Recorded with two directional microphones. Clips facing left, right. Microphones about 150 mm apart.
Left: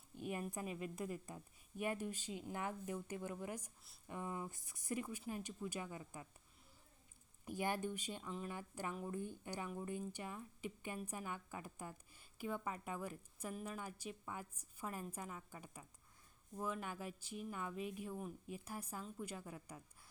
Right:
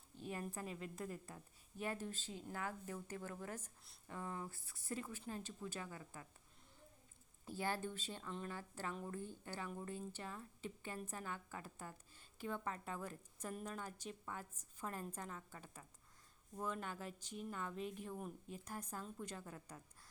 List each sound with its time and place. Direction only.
0.2 s a sound: 15° left (ahead or behind)
0.5 s a woman's voice: 15° left (ahead or behind)
7.4 s a woman's voice: 15° left (ahead or behind)